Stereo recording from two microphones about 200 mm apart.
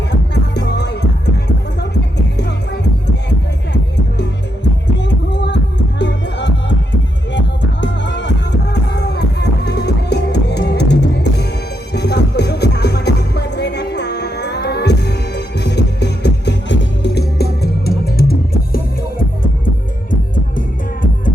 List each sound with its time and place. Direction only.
0.1 s music: 60° left (ahead or behind)
20.3 s music: 45° left (ahead or behind)